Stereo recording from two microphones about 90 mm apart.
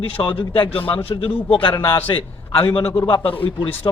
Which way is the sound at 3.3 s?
90° left.